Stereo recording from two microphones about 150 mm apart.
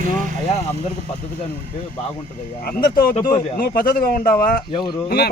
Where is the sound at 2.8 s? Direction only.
85° left.